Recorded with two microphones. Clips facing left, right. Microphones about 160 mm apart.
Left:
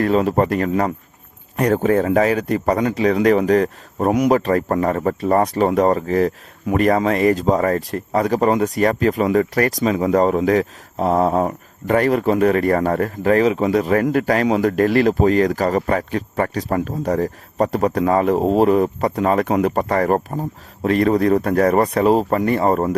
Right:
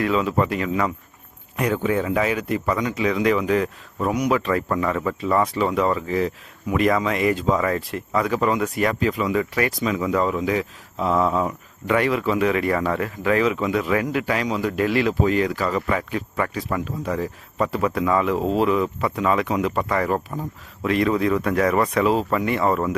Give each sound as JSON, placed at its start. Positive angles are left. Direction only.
{"t": 0.0, "sound": "speech", "side_deg": 45}